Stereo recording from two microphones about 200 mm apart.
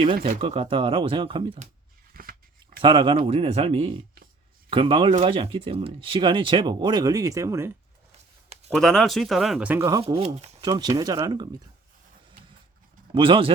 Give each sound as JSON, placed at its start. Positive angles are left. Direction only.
{"t": 0.3, "sound": "speech", "side_deg": -30}
{"t": 2.1, "sound": "scissors", "side_deg": -45}
{"t": 2.8, "sound": "speech", "side_deg": -25}
{"t": 8.7, "sound": "speech", "side_deg": 0}
{"t": 10.2, "sound": "speech", "side_deg": -30}
{"t": 10.6, "sound": "speech", "side_deg": -20}
{"t": 13.1, "sound": "speech", "side_deg": -25}